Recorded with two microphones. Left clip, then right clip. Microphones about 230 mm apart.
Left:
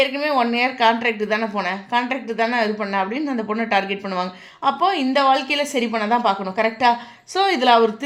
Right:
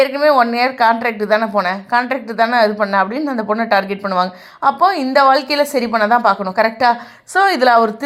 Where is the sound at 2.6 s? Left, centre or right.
Centre.